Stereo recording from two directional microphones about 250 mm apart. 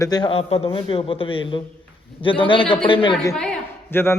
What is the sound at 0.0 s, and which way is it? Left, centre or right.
A man's voice, centre.